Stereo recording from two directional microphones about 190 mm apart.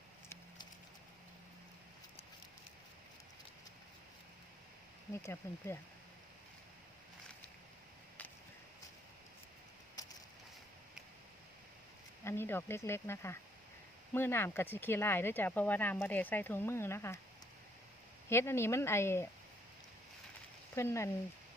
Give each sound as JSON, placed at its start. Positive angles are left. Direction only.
{"t": 5.1, "sound": "speech", "side_deg": 15}
{"t": 10.0, "sound": "a sound", "side_deg": 20}
{"t": 12.2, "sound": "speech", "side_deg": 10}
{"t": 18.3, "sound": "speech", "side_deg": 15}
{"t": 20.7, "sound": "speech", "side_deg": 15}